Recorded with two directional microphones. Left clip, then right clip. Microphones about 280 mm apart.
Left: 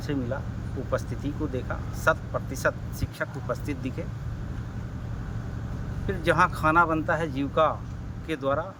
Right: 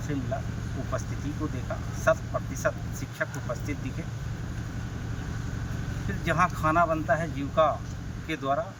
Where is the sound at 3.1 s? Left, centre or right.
Centre.